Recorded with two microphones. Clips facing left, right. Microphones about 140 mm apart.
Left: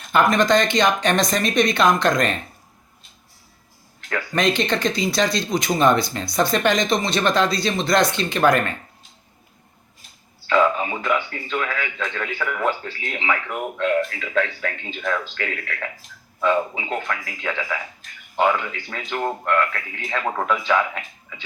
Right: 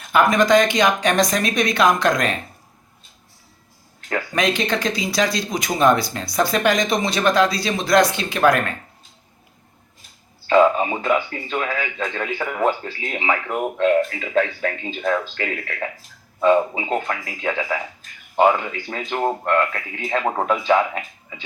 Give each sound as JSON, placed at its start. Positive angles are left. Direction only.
{"t": 0.0, "sound": "speech", "side_deg": -5}
{"t": 4.4, "sound": "speech", "side_deg": -5}
{"t": 10.4, "sound": "speech", "side_deg": -35}